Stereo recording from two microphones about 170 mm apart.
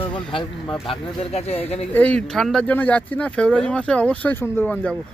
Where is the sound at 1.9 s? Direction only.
10° left (ahead or behind).